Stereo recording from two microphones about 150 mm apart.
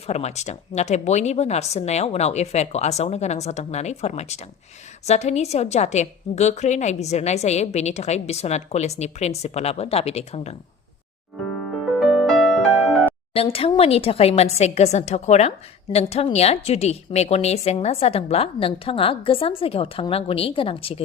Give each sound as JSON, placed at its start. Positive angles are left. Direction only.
{"t": 0.1, "sound": "a woman's voice", "side_deg": 45}
{"t": 11.7, "sound": "music", "side_deg": 0}
{"t": 13.3, "sound": "a woman's voice", "side_deg": 40}